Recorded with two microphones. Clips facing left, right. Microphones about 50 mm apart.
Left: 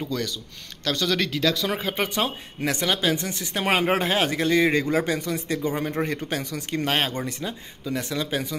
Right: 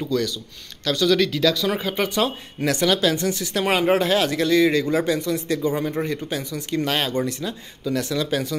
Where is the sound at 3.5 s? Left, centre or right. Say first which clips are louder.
Right 2 dB; left.